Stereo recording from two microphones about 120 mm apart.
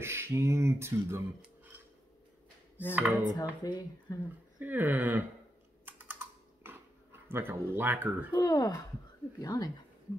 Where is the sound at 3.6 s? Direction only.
30° left (ahead or behind).